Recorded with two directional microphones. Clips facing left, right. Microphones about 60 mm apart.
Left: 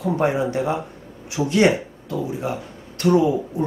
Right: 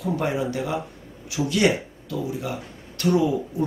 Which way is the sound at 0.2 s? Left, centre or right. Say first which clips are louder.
Left 5 dB; left.